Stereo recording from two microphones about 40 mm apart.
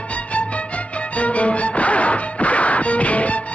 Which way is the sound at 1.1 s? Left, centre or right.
Left.